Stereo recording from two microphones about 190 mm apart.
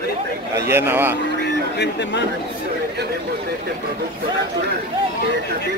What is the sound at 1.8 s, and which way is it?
Speech, 65° left (ahead or behind).